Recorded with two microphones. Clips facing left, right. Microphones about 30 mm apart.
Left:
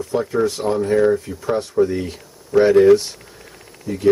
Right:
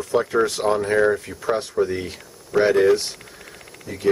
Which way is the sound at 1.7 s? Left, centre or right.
Centre.